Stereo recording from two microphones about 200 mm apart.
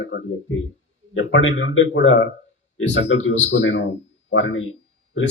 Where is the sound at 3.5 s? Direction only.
70° left (ahead or behind).